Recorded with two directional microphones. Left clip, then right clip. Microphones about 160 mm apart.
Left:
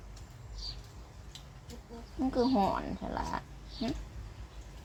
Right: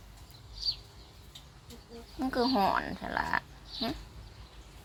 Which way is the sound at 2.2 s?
15° right (ahead or behind).